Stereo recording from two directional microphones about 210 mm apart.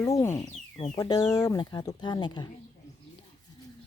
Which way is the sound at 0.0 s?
15° left (ahead or behind).